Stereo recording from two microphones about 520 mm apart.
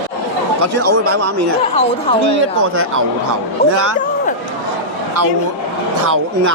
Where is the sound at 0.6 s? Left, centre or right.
Right.